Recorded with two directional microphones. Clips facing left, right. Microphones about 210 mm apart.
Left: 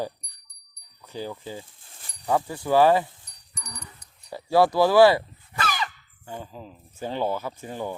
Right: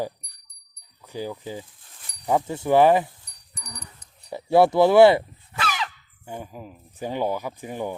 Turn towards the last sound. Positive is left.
turn(degrees=-15)  # may be behind; listen again after turning